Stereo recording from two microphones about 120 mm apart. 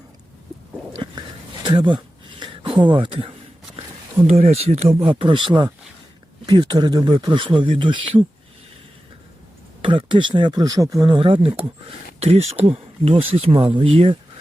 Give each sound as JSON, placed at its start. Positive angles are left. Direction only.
{"t": 1.6, "sound": "speech", "side_deg": -40}
{"t": 4.2, "sound": "speech", "side_deg": -60}
{"t": 9.8, "sound": "speech", "side_deg": -45}
{"t": 12.2, "sound": "speech", "side_deg": -60}